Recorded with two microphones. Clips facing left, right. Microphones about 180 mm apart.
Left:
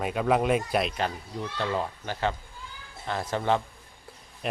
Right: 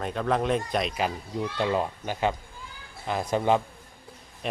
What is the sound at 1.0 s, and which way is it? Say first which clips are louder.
Speech: right 3 dB; 15° right (ahead or behind).